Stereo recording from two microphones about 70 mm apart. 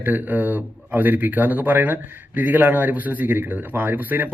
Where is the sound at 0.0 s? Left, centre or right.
Right.